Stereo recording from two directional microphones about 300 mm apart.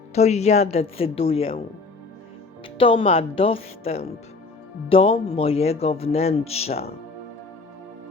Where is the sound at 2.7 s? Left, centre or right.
Centre.